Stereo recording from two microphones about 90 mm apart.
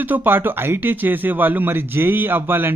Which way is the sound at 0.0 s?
20° right (ahead or behind).